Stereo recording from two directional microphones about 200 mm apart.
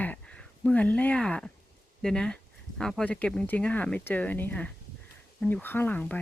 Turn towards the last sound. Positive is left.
turn(degrees=10)  # may be behind; listen again after turning